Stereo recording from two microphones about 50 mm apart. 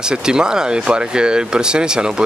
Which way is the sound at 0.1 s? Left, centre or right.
Centre.